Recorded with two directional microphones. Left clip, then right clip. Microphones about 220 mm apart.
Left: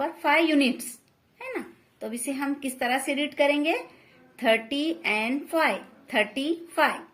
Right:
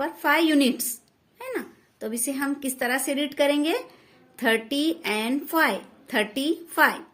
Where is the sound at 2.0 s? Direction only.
35° right (ahead or behind).